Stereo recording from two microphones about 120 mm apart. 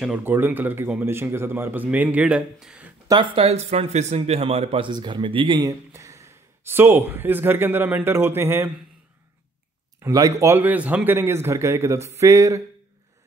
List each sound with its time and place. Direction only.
0.2 s a man's voice: 15° right (ahead or behind)
3.1 s speech: 45° right (ahead or behind)
5.6 s speech: 25° right (ahead or behind)
10.0 s a man's voice: 20° right (ahead or behind)